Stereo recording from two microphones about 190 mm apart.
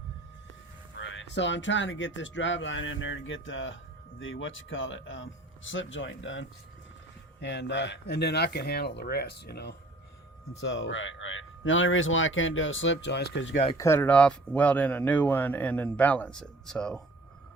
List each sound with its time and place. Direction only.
0.9 s speech: 75° left (ahead or behind)
7.4 s speech: 65° left (ahead or behind)
10.6 s a man's voice: 75° left (ahead or behind)
13.7 s speech: 15° left (ahead or behind)